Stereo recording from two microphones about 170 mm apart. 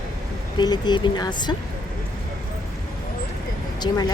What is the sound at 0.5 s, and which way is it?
A woman's voice, 25° left (ahead or behind).